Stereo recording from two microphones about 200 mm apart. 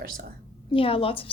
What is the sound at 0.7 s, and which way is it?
Speech, 25° left (ahead or behind).